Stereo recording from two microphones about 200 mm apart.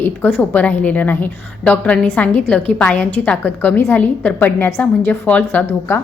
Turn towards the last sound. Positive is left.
turn(degrees=10)  # may be behind; listen again after turning